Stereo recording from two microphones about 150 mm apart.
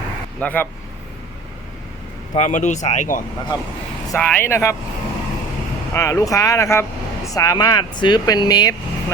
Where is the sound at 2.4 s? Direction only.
55° left (ahead or behind).